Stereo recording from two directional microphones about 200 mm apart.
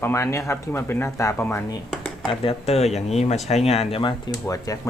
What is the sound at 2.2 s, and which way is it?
Speech, 25° left (ahead or behind).